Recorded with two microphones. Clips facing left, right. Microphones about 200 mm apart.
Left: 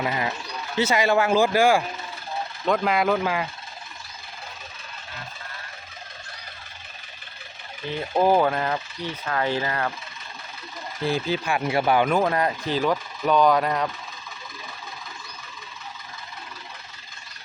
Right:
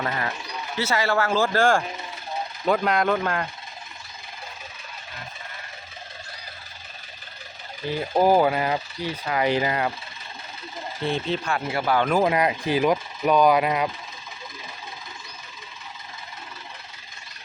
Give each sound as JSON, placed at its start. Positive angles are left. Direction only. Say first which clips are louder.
{"t": 0.0, "sound": "speech", "louder": "left 2 dB", "side_deg": 15}
{"t": 7.9, "sound": "speech", "louder": "right 1 dB", "side_deg": -10}
{"t": 11.0, "sound": "speech", "louder": "left 1 dB", "side_deg": 5}
{"t": 11.5, "sound": "a man's voice", "louder": "left 3 dB", "side_deg": 20}
{"t": 12.0, "sound": "speech", "louder": "right 1 dB", "side_deg": -10}